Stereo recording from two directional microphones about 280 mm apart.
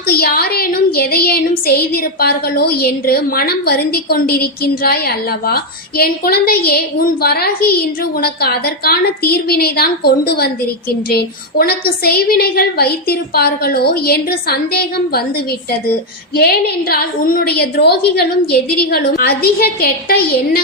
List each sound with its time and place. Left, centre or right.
0.1 s a woman's voice: left
16.3 s a woman's voice: left